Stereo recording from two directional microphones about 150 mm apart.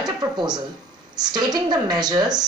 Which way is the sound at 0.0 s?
30° right (ahead or behind).